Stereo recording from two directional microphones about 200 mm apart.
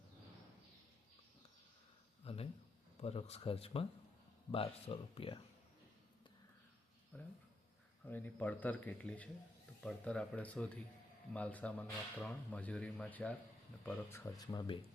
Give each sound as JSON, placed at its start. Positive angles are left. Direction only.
{"t": 2.2, "sound": "a sound", "side_deg": 30}
{"t": 3.0, "sound": "speech", "side_deg": 30}
{"t": 7.1, "sound": "speech", "side_deg": 10}
{"t": 14.3, "sound": "speech", "side_deg": 20}